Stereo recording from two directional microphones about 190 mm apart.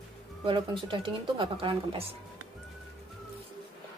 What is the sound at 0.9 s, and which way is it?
A woman's voice, 25° right (ahead or behind).